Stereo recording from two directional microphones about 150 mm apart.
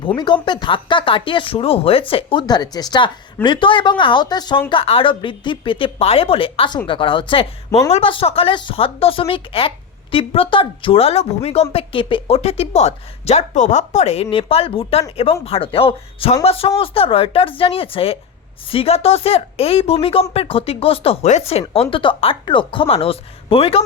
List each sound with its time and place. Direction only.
0.4 s a woman's voice: 30° left (ahead or behind)